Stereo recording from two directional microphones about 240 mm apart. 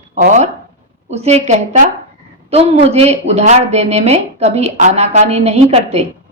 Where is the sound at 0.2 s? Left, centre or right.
Right.